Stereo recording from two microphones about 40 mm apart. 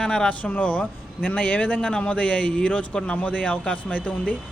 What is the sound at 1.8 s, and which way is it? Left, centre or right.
A man's voice, left.